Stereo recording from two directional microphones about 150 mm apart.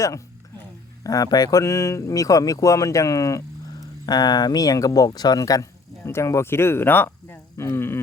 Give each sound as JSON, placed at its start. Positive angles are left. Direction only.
{"t": 1.0, "sound": "speech", "side_deg": 25}